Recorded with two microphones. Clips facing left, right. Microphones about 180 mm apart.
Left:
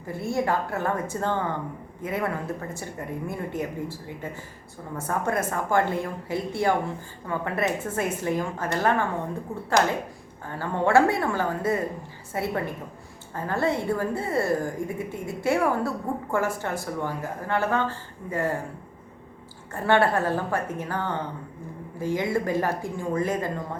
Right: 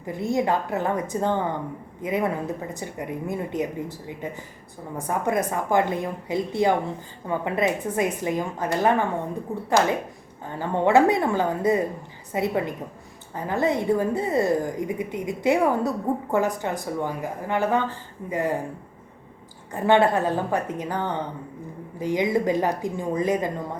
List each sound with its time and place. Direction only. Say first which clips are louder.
0.0 s a woman's voice: right 3 dB; 20° right (ahead or behind)
19.7 s a woman's voice: right 3 dB; 20° right (ahead or behind)